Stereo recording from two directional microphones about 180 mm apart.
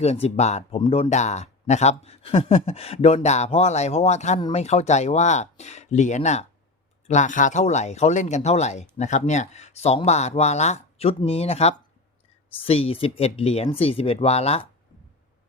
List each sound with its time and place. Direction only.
0.0 s speech: 35° left (ahead or behind)
4.4 s speech: 25° left (ahead or behind)
4.6 s speech: 40° left (ahead or behind)